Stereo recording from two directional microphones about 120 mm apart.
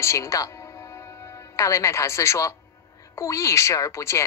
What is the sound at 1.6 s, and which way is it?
Speech, 25° left (ahead or behind).